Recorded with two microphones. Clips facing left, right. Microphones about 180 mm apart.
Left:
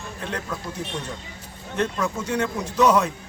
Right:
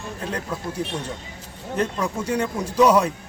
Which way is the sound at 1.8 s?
10° right (ahead or behind).